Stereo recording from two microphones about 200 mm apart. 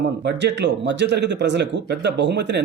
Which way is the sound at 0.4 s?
60° right (ahead or behind).